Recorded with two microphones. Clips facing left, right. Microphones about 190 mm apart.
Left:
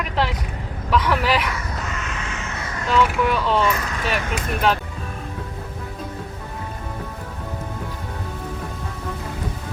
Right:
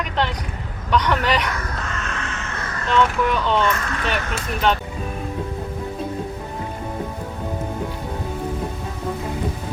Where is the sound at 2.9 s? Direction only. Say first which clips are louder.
Even; 5° left (ahead or behind).